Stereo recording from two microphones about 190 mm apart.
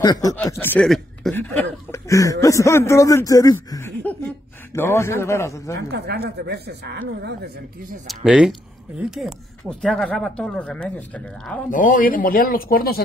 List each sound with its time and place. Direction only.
0.0 s speech: 20° left (ahead or behind); by 1.4 s centre (ahead or behind)
1.9 s a sound: 15° left (ahead or behind)
2.4 s a man's voice: 15° left (ahead or behind)
5.8 s speech: 60° right (ahead or behind)
8.1 s speech: 5° right (ahead or behind)
11.7 s speech: 45° left (ahead or behind)